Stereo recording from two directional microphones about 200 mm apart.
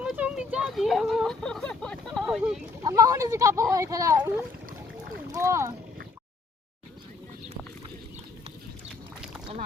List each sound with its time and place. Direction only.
0.0 s a sound: 5° right (ahead or behind)
2.8 s speech: 15° right (ahead or behind)
5.3 s speech: 15° right (ahead or behind)